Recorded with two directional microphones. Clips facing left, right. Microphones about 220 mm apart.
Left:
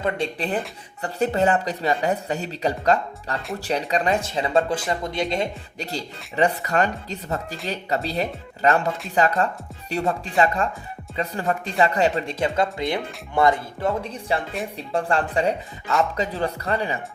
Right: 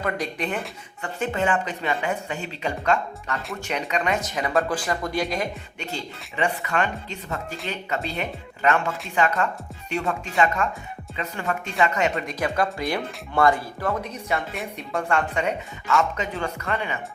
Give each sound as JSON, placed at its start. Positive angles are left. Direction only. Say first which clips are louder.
{"t": 0.0, "sound": "speech", "louder": "left 2 dB", "side_deg": 30}
{"t": 5.8, "sound": "speech", "louder": "left 2 dB", "side_deg": 35}